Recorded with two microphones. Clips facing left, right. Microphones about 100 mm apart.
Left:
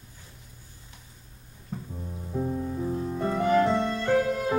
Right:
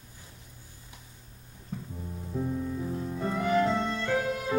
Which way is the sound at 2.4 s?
45° left (ahead or behind).